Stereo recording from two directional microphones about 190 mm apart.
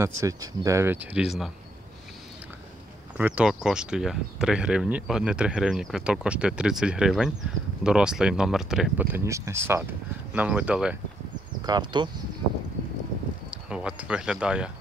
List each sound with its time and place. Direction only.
0.0 s speech: 15° right (ahead or behind)
3.2 s speech: 10° right (ahead or behind)
11.6 s speech: 25° right (ahead or behind)
13.5 s speech: 5° right (ahead or behind)